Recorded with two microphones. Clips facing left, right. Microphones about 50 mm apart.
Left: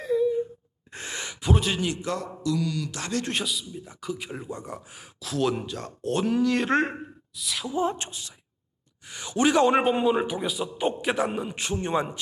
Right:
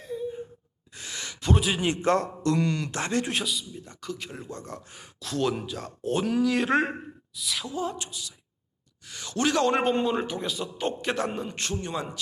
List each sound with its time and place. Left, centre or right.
0.9 s gasp: left
1.3 s speech: centre
1.8 s speech: right
3.2 s a man's voice: centre
7.7 s speech: left
9.0 s a man's voice: centre
11.8 s a man's voice: left